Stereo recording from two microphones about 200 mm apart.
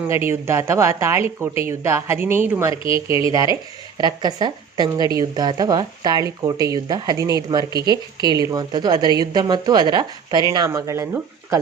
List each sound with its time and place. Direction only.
0.1 s a woman's voice: 10° right (ahead or behind)